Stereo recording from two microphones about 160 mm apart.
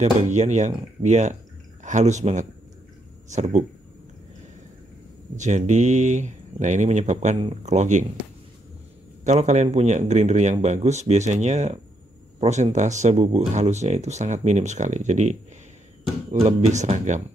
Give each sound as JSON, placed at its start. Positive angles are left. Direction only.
{"t": 0.0, "sound": "speech", "side_deg": -45}
{"t": 5.3, "sound": "speech", "side_deg": -50}
{"t": 9.2, "sound": "speech", "side_deg": -45}